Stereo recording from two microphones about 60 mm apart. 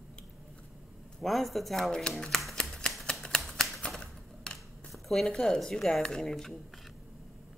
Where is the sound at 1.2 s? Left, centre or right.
Centre.